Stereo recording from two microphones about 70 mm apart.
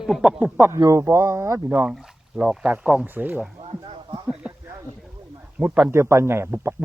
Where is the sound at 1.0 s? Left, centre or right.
Right.